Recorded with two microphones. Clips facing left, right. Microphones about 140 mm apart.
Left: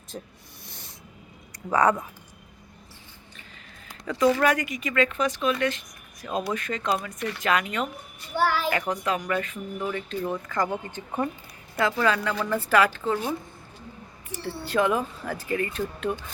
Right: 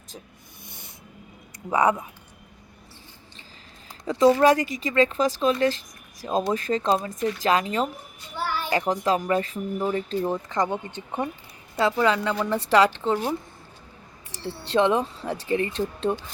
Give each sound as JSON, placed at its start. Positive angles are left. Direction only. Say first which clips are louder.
{"t": 0.1, "sound": "speech", "louder": "left 5 dB", "side_deg": 0}
{"t": 1.7, "sound": "speech", "louder": "even", "side_deg": -10}
{"t": 3.8, "sound": "speech", "louder": "right 4 dB", "side_deg": -25}
{"t": 8.4, "sound": "child singing", "louder": "left 5 dB", "side_deg": 90}
{"t": 8.7, "sound": "speech", "louder": "right 4 dB", "side_deg": -30}
{"t": 10.6, "sound": "speech", "louder": "right 1 dB", "side_deg": -20}
{"t": 14.4, "sound": "speech", "louder": "right 3 dB", "side_deg": -25}